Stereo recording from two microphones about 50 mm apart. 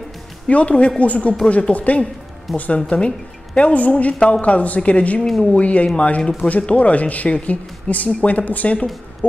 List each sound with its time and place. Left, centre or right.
0.5 s speech: left